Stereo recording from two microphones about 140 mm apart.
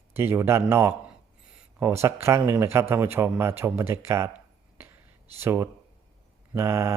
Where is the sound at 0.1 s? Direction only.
15° right (ahead or behind).